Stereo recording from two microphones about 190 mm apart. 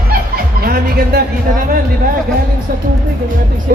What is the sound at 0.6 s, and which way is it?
Music, 50° right (ahead or behind).